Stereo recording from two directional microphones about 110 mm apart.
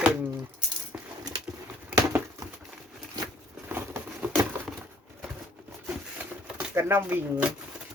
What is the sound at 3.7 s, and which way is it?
Patter, 15° right (ahead or behind).